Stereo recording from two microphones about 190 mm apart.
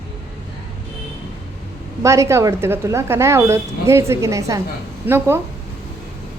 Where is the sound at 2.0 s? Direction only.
15° right (ahead or behind).